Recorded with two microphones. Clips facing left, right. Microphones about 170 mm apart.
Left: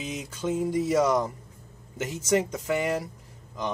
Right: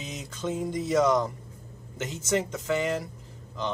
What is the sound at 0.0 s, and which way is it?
Speech, 10° left (ahead or behind).